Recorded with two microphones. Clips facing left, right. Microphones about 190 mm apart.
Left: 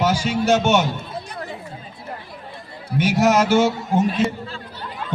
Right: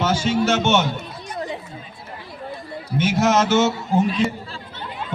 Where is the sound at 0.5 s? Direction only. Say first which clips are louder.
Left 6 dB; 15° left (ahead or behind).